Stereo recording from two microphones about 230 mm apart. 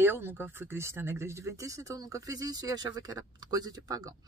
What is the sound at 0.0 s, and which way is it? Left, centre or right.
Speech, centre.